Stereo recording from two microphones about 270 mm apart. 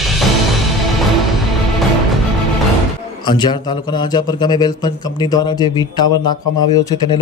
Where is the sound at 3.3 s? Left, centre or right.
Centre.